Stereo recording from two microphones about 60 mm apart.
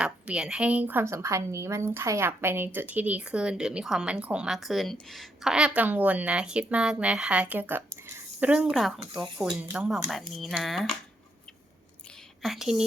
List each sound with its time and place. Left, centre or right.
0.0 s a woman's voice: centre
1.0 s a woman's voice: right; by 4.4 s centre
4.4 s a woman's voice: centre
5.5 s speech: centre
5.7 s a woman's voice: right
8.5 s speech: centre
10.1 s a woman's voice: centre
12.4 s speech: centre